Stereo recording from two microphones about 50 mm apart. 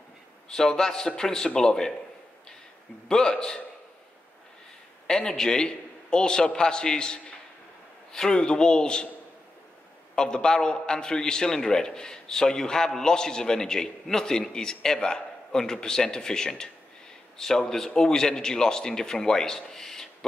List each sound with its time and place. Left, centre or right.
0.5 s a man's voice: centre
3.1 s a man's voice: centre
5.0 s a man's voice: centre
10.1 s a man's voice: centre